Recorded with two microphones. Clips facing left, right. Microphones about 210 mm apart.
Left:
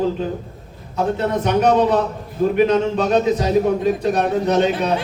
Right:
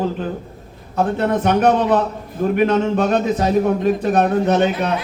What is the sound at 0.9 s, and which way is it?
A man's voice, 55° right (ahead or behind).